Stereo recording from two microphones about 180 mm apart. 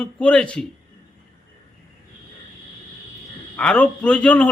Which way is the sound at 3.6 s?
5° left (ahead or behind).